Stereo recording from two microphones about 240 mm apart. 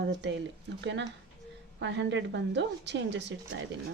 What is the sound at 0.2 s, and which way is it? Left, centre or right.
Speech, right.